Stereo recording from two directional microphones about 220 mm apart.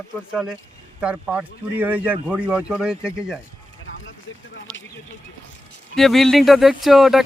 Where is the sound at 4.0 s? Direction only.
60° left (ahead or behind).